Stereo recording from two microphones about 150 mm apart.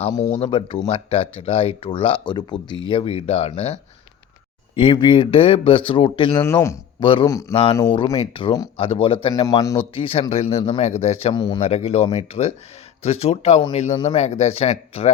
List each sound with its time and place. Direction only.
0.2 s speech: 40° left (ahead or behind)
6.4 s speech: 20° left (ahead or behind)
7.0 s speech: 35° left (ahead or behind)
7.3 s speech: 20° left (ahead or behind)
7.5 s speech: 35° left (ahead or behind)
9.3 s speech: 25° left (ahead or behind)
9.7 s speech: 35° left (ahead or behind)
11.3 s speech: 30° left (ahead or behind)
11.6 s speech: 45° left (ahead or behind)
13.9 s speech: 30° left (ahead or behind)
14.2 s speech: 45° left (ahead or behind)